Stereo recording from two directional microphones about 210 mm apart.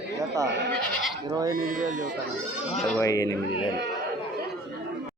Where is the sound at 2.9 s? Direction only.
15° left (ahead or behind).